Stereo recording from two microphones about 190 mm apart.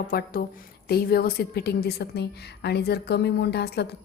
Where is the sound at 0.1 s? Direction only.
50° left (ahead or behind).